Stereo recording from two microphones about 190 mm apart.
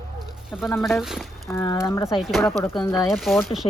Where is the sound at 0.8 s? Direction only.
Centre (ahead or behind).